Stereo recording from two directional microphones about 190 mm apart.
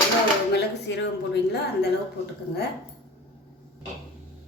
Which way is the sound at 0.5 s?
65° left (ahead or behind).